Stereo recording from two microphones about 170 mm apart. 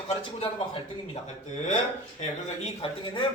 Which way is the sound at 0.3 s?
30° left (ahead or behind).